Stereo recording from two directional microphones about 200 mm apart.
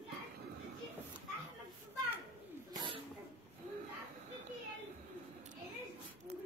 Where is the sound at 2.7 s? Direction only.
25° right (ahead or behind).